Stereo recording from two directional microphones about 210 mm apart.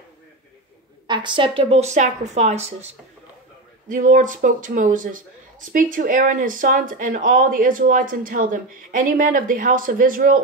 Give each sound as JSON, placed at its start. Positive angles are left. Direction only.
{"t": 1.0, "sound": "speech", "side_deg": -20}
{"t": 3.9, "sound": "speech", "side_deg": -40}